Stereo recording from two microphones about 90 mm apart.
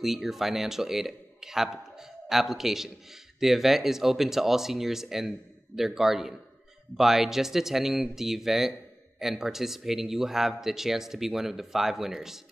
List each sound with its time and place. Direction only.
0.0 s a man's voice: 5° right (ahead or behind)